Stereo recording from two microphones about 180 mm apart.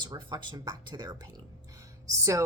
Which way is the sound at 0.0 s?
25° right (ahead or behind).